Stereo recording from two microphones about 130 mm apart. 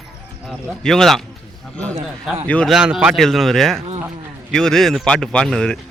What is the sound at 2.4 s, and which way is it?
Speech, 10° left (ahead or behind).